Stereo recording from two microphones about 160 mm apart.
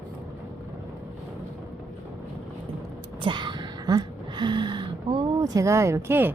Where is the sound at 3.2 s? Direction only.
30° right (ahead or behind).